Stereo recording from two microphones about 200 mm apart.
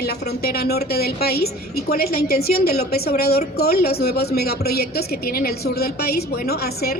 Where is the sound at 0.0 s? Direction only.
50° left (ahead or behind).